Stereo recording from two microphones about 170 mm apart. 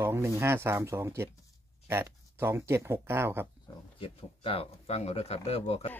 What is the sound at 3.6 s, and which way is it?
Speech, 30° left (ahead or behind).